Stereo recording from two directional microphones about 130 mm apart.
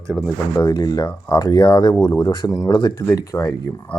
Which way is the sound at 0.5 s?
25° left (ahead or behind).